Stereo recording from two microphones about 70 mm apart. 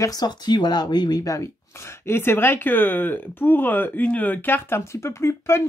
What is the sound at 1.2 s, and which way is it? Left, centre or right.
Speech, left.